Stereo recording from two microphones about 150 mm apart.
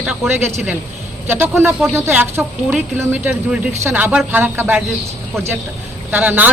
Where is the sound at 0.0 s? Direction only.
10° right (ahead or behind).